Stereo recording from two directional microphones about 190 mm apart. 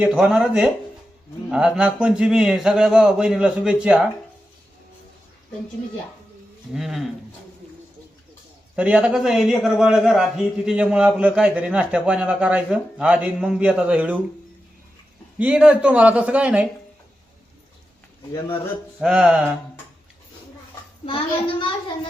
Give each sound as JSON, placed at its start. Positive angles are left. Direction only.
{"t": 0.0, "sound": "a man's voice", "side_deg": -5}
{"t": 6.7, "sound": "a man's voice", "side_deg": 0}
{"t": 8.7, "sound": "a man's voice", "side_deg": -5}
{"t": 15.4, "sound": "speech", "side_deg": -5}
{"t": 18.9, "sound": "a man's voice", "side_deg": -5}
{"t": 21.1, "sound": "a child's voice", "side_deg": 30}